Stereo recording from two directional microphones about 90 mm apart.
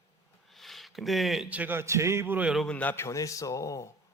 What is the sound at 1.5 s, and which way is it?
Speech, 20° right (ahead or behind).